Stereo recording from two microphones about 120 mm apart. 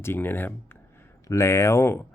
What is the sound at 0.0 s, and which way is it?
Speech, 20° left (ahead or behind).